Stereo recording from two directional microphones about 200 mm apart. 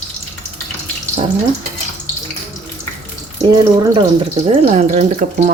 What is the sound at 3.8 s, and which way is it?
Speech, 25° right (ahead or behind).